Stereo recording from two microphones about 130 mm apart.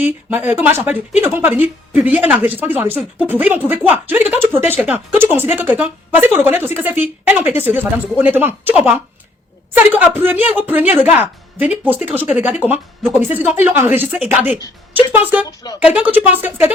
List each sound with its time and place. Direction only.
0.0 s speech: 15° right (ahead or behind)